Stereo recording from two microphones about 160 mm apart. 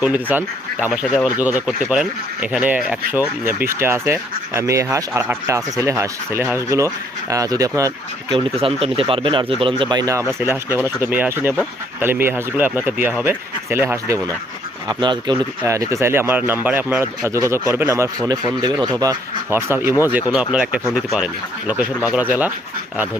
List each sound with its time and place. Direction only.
0.0 s speech: 10° right (ahead or behind)
14.8 s speech: 30° right (ahead or behind)
15.6 s speech: 20° right (ahead or behind)